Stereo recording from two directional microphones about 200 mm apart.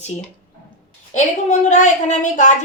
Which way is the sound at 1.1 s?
35° left (ahead or behind).